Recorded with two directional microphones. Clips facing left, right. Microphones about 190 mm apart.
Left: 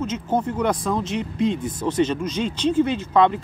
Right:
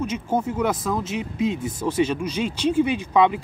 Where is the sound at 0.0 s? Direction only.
10° right (ahead or behind).